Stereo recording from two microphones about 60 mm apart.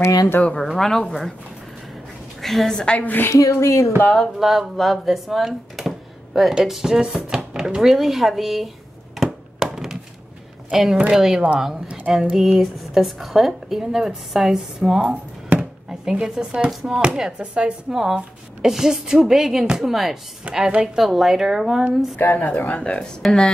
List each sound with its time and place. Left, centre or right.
0.4 s a woman's voice: centre
2.4 s a woman's voice: centre
3.0 s speech: left
3.3 s speech: left
4.2 s speech: centre
9.1 s a sound: centre
10.7 s a woman's voice: centre
20.4 s speech: centre
22.1 s a woman's voice: left; by 23.5 s centre